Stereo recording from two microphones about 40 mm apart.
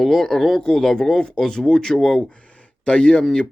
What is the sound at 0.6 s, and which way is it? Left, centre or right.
Speech, centre.